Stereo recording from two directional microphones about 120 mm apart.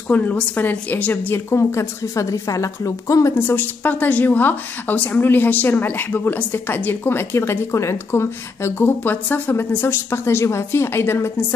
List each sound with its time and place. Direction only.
0.1 s a woman's voice: 15° left (ahead or behind)